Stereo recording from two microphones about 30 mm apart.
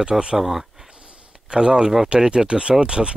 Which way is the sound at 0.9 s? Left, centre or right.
Right.